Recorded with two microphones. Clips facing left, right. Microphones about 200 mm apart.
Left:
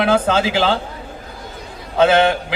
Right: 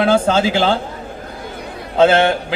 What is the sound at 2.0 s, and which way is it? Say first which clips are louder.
Speech: right 1 dB; 25° right (ahead or behind).